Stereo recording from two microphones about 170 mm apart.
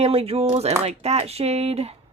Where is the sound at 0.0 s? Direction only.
35° right (ahead or behind).